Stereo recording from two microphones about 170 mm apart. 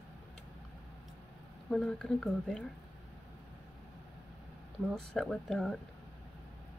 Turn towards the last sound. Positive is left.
turn(degrees=5)  # may be behind; listen again after turning